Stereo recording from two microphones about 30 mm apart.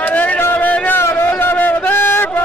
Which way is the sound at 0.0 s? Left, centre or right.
Left.